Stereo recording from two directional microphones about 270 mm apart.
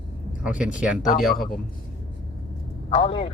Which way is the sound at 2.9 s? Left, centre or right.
Centre.